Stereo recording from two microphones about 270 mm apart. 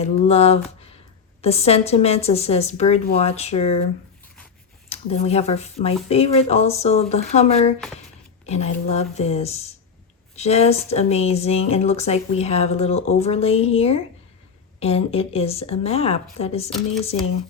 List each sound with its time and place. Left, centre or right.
0.0 s speech: left
4.9 s speech: left